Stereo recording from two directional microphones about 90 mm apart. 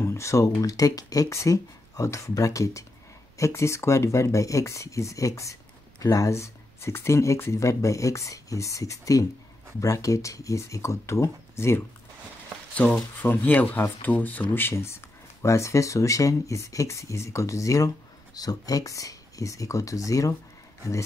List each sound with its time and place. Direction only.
0.0 s speech: 30° left (ahead or behind)
12.7 s speech: 5° left (ahead or behind)
13.2 s speech: 20° left (ahead or behind); by 20.3 s 40° left (ahead or behind)